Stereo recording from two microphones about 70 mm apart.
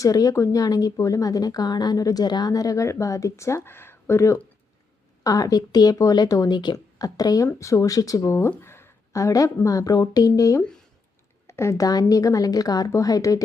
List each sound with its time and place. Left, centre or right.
0.0 s speech: left
5.2 s speech: left
7.0 s speech: left
7.4 s speech: left
8.2 s speech: left
8.4 s a sound: left
9.1 s speech: left
11.4 s speech: left